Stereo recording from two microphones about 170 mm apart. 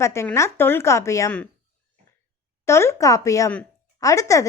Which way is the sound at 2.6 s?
15° left (ahead or behind).